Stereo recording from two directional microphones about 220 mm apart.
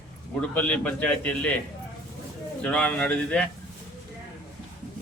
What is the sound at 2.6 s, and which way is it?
Speech, 5° left (ahead or behind).